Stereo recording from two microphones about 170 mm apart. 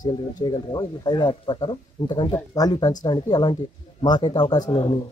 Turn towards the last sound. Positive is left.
turn(degrees=25)  # may be behind; listen again after turning